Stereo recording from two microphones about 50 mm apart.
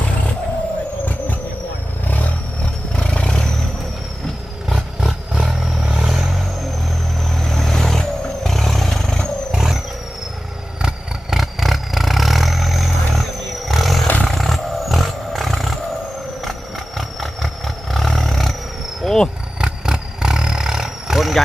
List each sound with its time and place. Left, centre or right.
2.0 s a sound: left
2.9 s roar: centre
4.7 s roar: centre
5.8 s vehicle: centre
9.5 s vehicle: centre
13.7 s roar: centre
16.4 s a sound: centre
17.9 s roar: centre
19.6 s roar: centre